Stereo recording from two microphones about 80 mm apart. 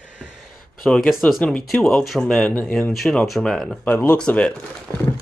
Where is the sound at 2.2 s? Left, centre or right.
Centre.